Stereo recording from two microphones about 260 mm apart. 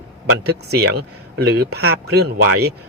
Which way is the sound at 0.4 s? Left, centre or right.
Right.